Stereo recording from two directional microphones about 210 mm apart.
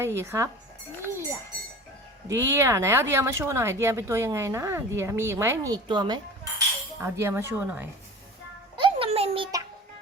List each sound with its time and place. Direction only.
0.0 s speech: 10° right (ahead or behind)
1.0 s livestock: 10° right (ahead or behind)
2.2 s speech: 15° right (ahead or behind)
8.7 s music: 25° right (ahead or behind)